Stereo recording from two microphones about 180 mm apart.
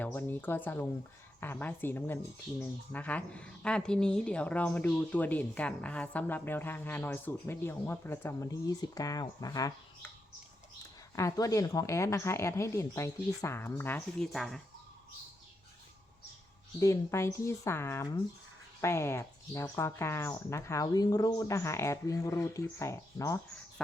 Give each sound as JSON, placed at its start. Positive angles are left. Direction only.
{"t": 0.0, "sound": "speech", "side_deg": 10}
{"t": 11.1, "sound": "speech", "side_deg": 15}
{"t": 16.8, "sound": "speech", "side_deg": 15}